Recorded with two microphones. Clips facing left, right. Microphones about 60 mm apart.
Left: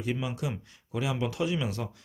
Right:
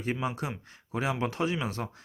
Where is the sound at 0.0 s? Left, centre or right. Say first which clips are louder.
Even; right.